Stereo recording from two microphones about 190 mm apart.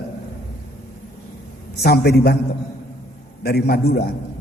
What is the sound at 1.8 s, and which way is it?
Speech, 60° left (ahead or behind).